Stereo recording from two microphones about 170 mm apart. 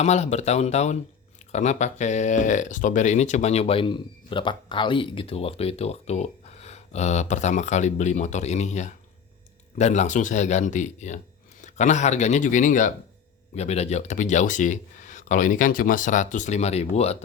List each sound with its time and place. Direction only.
0.0 s speech: 40° left (ahead or behind)